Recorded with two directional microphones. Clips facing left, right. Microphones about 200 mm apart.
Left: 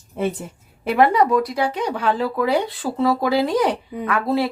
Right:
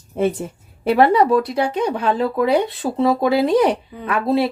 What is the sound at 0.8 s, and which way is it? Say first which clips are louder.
Speech: right 2 dB; 30° right (ahead or behind).